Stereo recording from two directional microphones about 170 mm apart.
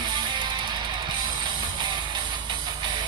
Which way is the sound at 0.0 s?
25° right (ahead or behind).